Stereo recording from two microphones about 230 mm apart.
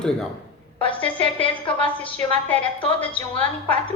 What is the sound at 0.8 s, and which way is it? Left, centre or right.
Speech, left.